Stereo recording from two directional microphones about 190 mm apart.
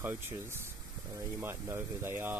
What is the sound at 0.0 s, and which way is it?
Speech, 10° right (ahead or behind).